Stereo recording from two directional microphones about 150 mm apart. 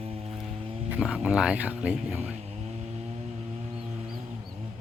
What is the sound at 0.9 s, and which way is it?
Speech, 5° right (ahead or behind).